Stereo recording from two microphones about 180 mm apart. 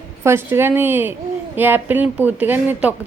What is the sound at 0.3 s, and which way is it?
Speech, 15° right (ahead or behind).